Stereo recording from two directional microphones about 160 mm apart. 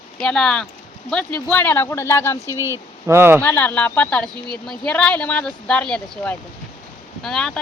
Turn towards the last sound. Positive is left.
turn(degrees=5)  # may be behind; listen again after turning